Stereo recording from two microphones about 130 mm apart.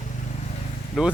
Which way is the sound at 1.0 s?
5° right (ahead or behind).